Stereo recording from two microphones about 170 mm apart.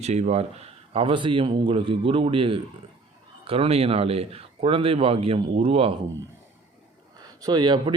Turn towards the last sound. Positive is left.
turn(degrees=-25)  # may be behind; listen again after turning